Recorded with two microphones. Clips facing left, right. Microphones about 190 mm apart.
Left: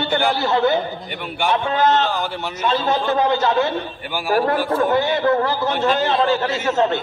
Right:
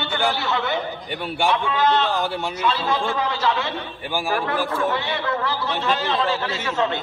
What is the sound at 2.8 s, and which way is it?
A man's voice, 30° left (ahead or behind).